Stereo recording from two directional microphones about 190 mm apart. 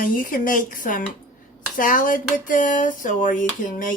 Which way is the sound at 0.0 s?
45° left (ahead or behind).